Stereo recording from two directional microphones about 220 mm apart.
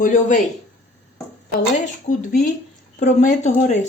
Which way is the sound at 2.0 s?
35° left (ahead or behind).